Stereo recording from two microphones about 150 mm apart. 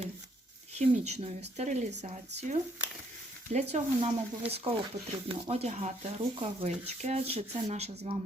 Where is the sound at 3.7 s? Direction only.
45° right (ahead or behind).